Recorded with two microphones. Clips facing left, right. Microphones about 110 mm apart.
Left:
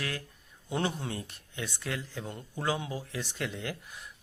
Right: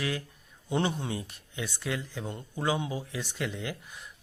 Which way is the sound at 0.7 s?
Centre (ahead or behind).